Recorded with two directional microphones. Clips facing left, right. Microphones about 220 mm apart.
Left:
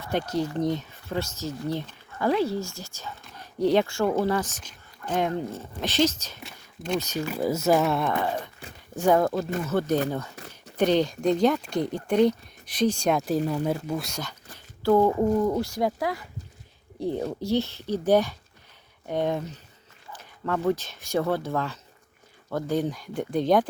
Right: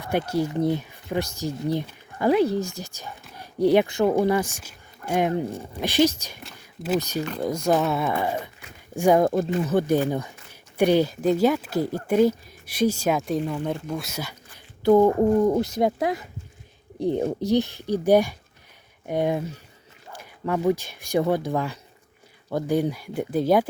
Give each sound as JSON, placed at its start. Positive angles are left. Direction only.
{"t": 0.0, "sound": "speech", "side_deg": -10}
{"t": 7.3, "sound": "speech", "side_deg": 5}
{"t": 8.2, "sound": "speech", "side_deg": -10}
{"t": 13.4, "sound": "speech", "side_deg": 40}
{"t": 13.7, "sound": "speech", "side_deg": 5}